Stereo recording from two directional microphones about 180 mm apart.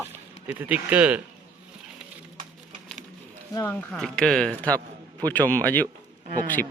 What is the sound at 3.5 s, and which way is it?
Speech, 10° left (ahead or behind).